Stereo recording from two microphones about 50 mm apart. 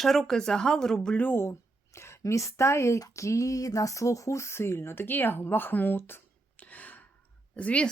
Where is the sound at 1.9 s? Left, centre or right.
Left.